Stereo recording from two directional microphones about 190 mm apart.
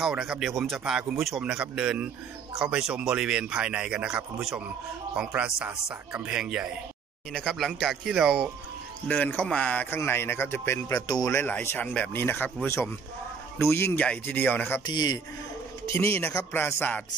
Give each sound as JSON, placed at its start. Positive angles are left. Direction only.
{"t": 0.0, "sound": "speech", "side_deg": -5}
{"t": 14.9, "sound": "a man's voice", "side_deg": 20}
{"t": 16.2, "sound": "speech", "side_deg": 10}